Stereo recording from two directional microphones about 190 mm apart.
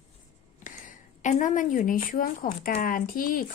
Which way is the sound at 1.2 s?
40° left (ahead or behind).